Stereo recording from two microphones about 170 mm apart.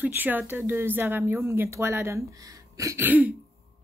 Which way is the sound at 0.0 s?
10° right (ahead or behind).